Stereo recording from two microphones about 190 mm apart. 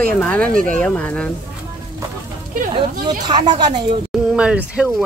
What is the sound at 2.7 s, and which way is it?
Speech, 25° right (ahead or behind).